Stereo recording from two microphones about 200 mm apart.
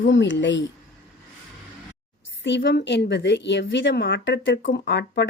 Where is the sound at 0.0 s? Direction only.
65° left (ahead or behind).